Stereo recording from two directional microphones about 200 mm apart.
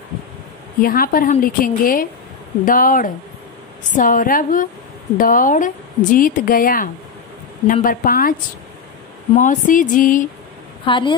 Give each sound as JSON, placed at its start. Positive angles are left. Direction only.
{"t": 0.7, "sound": "a woman's voice", "side_deg": 45}
{"t": 10.9, "sound": "a woman's voice", "side_deg": 25}